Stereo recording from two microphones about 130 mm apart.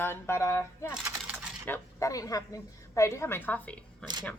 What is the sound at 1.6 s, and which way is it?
Speech, 20° left (ahead or behind).